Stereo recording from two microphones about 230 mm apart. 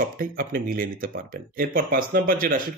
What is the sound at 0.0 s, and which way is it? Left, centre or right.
Speech, right.